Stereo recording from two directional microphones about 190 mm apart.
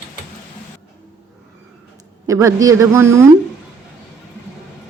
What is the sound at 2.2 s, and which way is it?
Speech, 15° right (ahead or behind).